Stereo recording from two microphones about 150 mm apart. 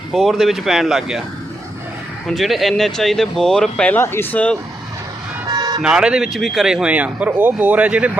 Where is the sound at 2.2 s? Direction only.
Centre (ahead or behind).